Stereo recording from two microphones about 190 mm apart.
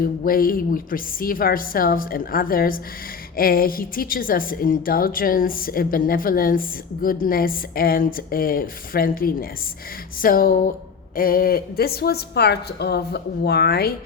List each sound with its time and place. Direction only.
0.0 s a woman's voice: 50° left (ahead or behind)